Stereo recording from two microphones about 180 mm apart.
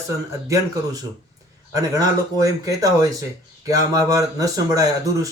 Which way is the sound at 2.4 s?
20° right (ahead or behind).